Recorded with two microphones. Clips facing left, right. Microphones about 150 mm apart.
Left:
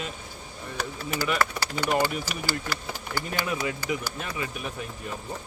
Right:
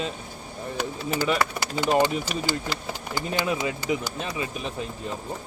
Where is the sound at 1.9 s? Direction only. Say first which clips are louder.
Right 4 dB; 20° right (ahead or behind).